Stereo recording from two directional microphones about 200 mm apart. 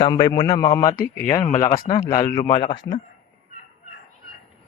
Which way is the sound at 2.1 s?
15° left (ahead or behind).